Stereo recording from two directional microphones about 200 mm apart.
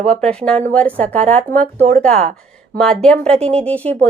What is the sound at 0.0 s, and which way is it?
Speech, 5° left (ahead or behind).